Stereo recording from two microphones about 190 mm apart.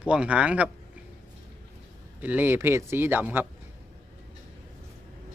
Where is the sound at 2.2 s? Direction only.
10° right (ahead or behind).